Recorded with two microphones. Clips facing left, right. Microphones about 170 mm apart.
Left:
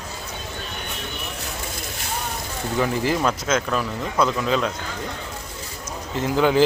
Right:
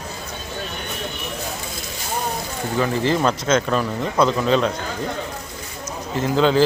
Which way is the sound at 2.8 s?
10° left (ahead or behind).